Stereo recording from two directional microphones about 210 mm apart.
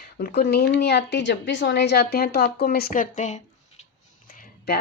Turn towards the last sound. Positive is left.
turn(degrees=45)  # may be behind; listen again after turning